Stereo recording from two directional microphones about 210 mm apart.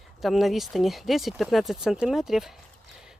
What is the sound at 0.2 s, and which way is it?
Speech, centre (ahead or behind).